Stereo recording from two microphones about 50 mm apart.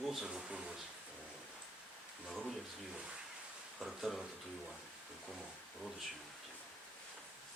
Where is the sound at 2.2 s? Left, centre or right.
Centre.